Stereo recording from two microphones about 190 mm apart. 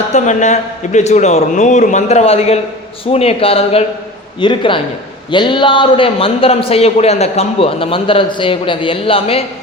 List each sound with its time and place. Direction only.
0.1 s a man's voice: 40° left (ahead or behind)